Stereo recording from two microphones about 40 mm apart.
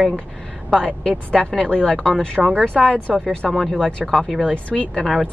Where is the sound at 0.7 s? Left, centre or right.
Centre.